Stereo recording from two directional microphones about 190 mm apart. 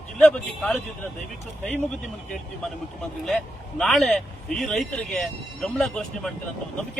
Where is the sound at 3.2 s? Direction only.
Centre (ahead or behind).